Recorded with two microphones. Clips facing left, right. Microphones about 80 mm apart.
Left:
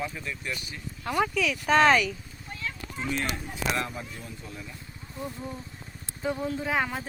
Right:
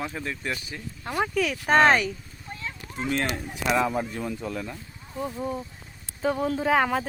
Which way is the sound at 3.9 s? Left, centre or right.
Right.